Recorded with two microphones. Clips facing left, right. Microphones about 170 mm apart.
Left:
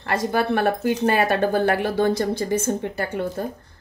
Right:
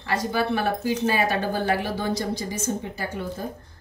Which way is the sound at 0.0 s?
55° left (ahead or behind).